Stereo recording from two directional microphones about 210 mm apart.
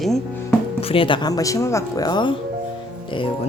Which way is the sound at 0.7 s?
25° left (ahead or behind).